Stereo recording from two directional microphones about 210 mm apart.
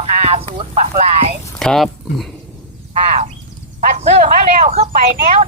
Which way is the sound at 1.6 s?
Centre (ahead or behind).